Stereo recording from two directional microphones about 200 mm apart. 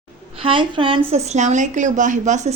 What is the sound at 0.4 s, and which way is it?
A woman's voice, 25° right (ahead or behind).